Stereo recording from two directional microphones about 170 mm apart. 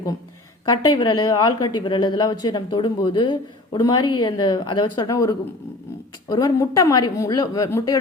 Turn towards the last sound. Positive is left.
turn(degrees=20)  # may be behind; listen again after turning